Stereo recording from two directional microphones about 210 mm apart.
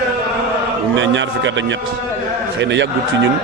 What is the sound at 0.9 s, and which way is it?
A man's voice, 60° right (ahead or behind).